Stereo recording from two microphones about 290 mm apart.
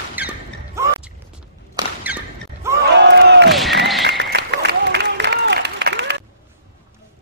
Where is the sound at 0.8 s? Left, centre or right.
Centre.